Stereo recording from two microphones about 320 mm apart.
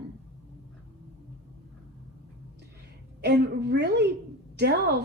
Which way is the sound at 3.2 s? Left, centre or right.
Right.